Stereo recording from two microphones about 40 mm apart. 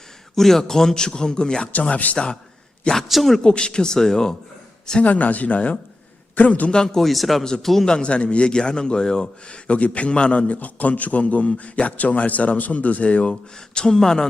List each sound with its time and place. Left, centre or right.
0.3 s a man's voice: centre
1.7 s a man's voice: left
2.1 s speech: centre
3.1 s a man's voice: centre
3.4 s speech: left
5.0 s a man's voice: left
6.7 s a man's voice: centre
7.0 s a man's voice: centre
7.9 s a man's voice: left
13.7 s a man's voice: centre